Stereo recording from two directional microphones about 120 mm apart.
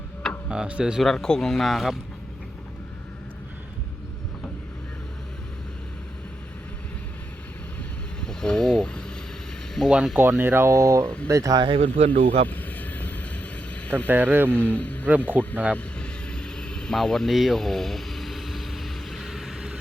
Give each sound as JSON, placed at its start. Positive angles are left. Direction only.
{"t": 0.5, "sound": "speech", "side_deg": -10}
{"t": 1.0, "sound": "speech", "side_deg": 5}
{"t": 8.2, "sound": "vehicle", "side_deg": 5}
{"t": 9.7, "sound": "speech", "side_deg": 0}
{"t": 10.2, "sound": "speech", "side_deg": -20}
{"t": 11.8, "sound": "speech", "side_deg": -80}
{"t": 12.5, "sound": "vehicle", "side_deg": 15}
{"t": 13.8, "sound": "speech", "side_deg": 10}
{"t": 14.1, "sound": "speech", "side_deg": -15}
{"t": 14.5, "sound": "a man's voice", "side_deg": 10}
{"t": 15.3, "sound": "speech", "side_deg": -15}
{"t": 15.7, "sound": "vehicle", "side_deg": 5}